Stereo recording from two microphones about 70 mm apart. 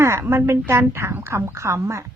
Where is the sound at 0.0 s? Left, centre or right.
Right.